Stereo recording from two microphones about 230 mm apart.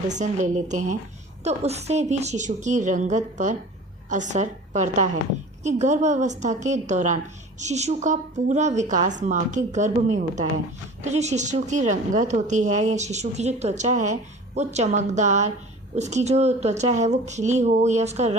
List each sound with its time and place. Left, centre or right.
0.1 s a woman's voice: right